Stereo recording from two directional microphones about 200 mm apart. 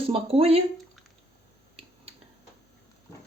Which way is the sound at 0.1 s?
30° right (ahead or behind).